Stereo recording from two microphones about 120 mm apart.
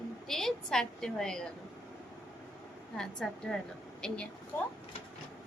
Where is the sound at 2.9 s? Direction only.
5° left (ahead or behind).